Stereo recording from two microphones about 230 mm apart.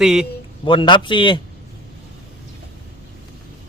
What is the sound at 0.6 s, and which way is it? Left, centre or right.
Speech, left.